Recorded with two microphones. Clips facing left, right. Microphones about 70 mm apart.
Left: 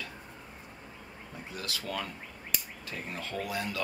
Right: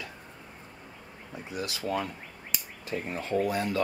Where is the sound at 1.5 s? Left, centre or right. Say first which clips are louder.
Right 6 dB; right.